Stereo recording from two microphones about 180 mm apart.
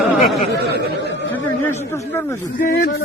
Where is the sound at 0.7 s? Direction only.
70° right (ahead or behind).